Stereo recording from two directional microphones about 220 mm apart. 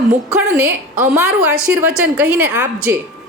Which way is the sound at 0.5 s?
5° right (ahead or behind).